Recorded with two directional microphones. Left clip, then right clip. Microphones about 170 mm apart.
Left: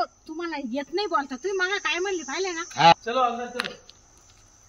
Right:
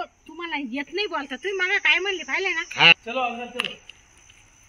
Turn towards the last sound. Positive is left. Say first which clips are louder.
# even
turn(degrees=5)  # may be behind; listen again after turning